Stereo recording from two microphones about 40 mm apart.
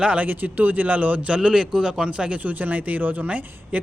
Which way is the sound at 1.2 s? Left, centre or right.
Right.